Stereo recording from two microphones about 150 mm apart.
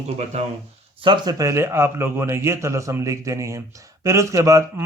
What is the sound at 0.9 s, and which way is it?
Speech, 30° right (ahead or behind).